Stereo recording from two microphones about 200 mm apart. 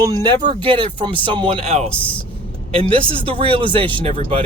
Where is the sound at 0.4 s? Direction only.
25° right (ahead or behind).